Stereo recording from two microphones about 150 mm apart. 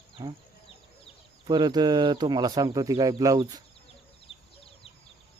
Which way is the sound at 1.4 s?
30° right (ahead or behind).